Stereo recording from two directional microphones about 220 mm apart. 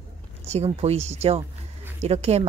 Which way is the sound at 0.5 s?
25° right (ahead or behind).